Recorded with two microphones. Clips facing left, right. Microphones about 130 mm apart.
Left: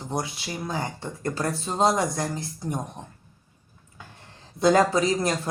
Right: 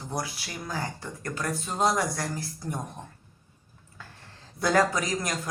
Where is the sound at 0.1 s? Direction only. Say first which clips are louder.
Left 4 dB; 25° left (ahead or behind).